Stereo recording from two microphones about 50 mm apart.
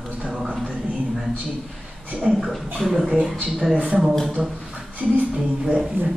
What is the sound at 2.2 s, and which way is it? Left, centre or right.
Speech, centre.